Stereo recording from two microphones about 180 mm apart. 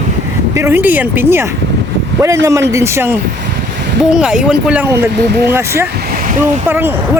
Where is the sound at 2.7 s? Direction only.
15° right (ahead or behind).